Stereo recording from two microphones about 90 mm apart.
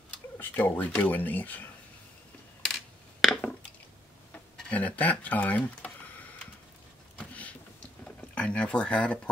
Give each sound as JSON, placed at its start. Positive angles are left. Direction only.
{"t": 0.4, "sound": "speech", "side_deg": 20}
{"t": 2.6, "sound": "coin", "side_deg": 5}
{"t": 4.6, "sound": "speech", "side_deg": 15}
{"t": 8.0, "sound": "speech", "side_deg": 15}